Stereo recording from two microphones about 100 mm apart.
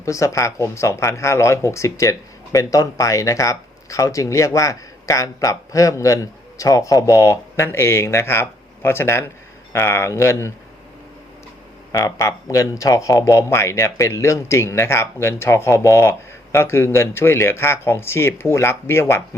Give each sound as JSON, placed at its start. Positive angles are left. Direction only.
{"t": 0.0, "sound": "speech", "side_deg": 30}
{"t": 11.9, "sound": "speech", "side_deg": 35}